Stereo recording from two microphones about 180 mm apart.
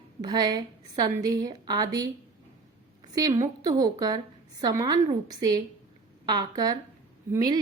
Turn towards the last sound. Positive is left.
turn(degrees=-20)  # may be behind; listen again after turning